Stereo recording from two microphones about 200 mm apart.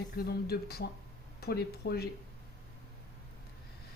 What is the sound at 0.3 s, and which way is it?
A woman's voice, 50° left (ahead or behind).